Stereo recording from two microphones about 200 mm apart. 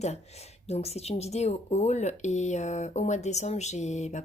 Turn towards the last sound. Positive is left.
turn(degrees=35)  # may be behind; listen again after turning